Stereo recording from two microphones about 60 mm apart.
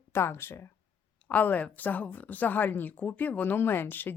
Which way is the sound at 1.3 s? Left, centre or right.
Left.